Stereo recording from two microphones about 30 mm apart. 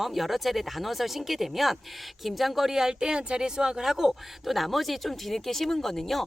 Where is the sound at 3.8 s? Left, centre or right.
Centre.